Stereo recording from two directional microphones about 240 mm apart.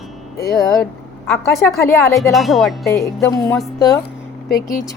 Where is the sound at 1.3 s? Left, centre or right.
Centre.